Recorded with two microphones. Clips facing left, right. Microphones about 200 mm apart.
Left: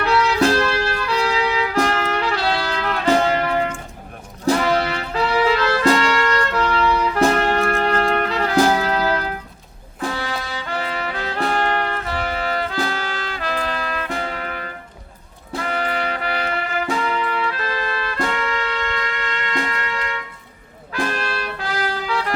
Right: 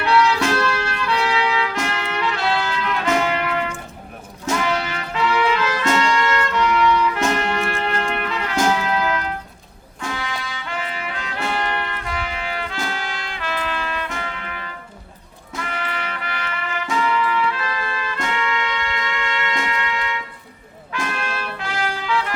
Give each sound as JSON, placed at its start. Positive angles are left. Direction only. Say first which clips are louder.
{"t": 0.0, "sound": "music", "louder": "left 1 dB", "side_deg": 35}